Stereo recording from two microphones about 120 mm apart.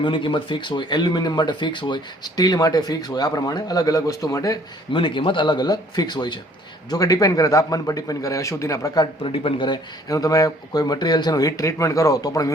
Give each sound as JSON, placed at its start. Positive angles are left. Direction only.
{"t": 0.0, "sound": "speech", "side_deg": 45}
{"t": 4.9, "sound": "a man's voice", "side_deg": 45}
{"t": 9.2, "sound": "speech", "side_deg": 50}